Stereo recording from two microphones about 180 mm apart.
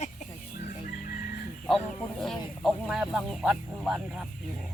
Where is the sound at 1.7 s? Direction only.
Centre (ahead or behind).